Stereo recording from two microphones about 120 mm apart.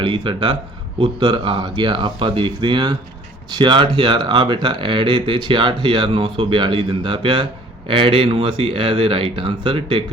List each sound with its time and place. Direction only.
0.0 s speech: 45° right (ahead or behind)